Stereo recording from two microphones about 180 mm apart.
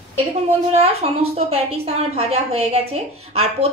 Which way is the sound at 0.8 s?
35° right (ahead or behind).